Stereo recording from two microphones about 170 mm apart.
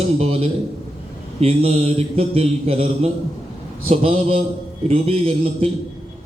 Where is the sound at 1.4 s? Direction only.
35° right (ahead or behind).